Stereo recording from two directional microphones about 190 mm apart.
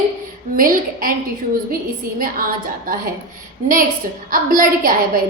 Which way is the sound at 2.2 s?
45° right (ahead or behind).